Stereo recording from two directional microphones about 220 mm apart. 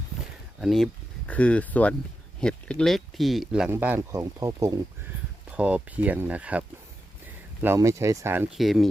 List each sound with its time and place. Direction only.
0.6 s speech: centre (ahead or behind)